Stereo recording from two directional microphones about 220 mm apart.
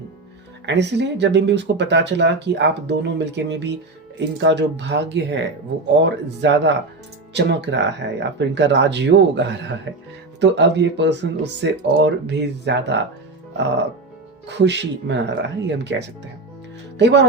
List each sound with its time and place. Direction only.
0.6 s speech: 50° right (ahead or behind)
14.4 s speech: 50° right (ahead or behind)